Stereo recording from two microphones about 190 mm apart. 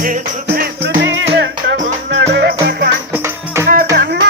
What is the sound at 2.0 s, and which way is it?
Music, 65° right (ahead or behind).